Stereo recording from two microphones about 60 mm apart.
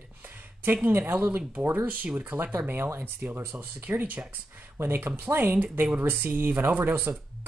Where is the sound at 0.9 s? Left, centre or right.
Right.